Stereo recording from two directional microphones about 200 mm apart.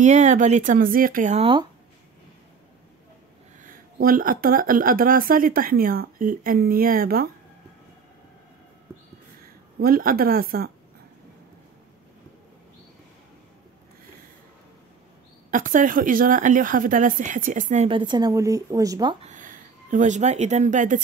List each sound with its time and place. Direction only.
0.0 s speech: 35° right (ahead or behind)
3.6 s speech: 45° right (ahead or behind)
9.8 s speech: 45° right (ahead or behind)
15.5 s speech: 40° right (ahead or behind)
17.8 s speech: 25° right (ahead or behind)
19.2 s a woman's voice: 40° right (ahead or behind)